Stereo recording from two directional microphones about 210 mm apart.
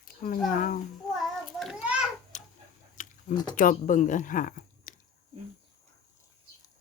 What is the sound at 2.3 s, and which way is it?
Chicken, 35° left (ahead or behind).